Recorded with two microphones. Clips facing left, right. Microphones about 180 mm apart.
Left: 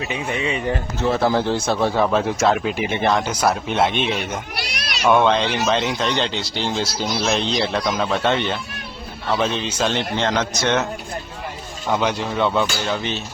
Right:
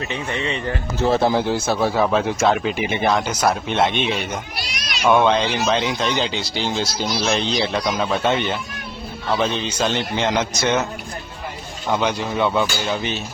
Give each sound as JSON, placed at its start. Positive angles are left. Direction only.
{"t": 0.0, "sound": "speech", "side_deg": 10}
{"t": 1.0, "sound": "speech", "side_deg": -30}
{"t": 1.3, "sound": "speech", "side_deg": -15}
{"t": 9.3, "sound": "speech", "side_deg": 0}
{"t": 11.9, "sound": "speech", "side_deg": 0}